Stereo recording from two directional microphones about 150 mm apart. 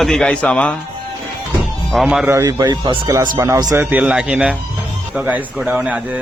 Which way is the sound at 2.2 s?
20° right (ahead or behind).